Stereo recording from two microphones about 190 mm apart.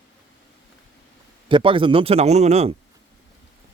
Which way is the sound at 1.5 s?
25° right (ahead or behind).